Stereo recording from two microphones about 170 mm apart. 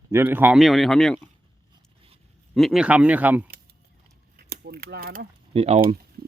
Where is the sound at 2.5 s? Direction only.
Centre (ahead or behind).